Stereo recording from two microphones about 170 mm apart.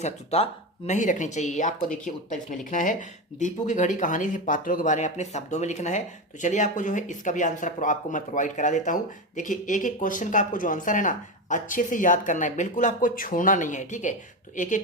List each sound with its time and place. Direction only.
0.0 s speech: 35° left (ahead or behind)